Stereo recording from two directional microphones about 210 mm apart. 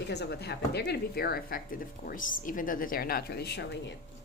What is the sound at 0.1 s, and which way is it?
Speech, 50° left (ahead or behind).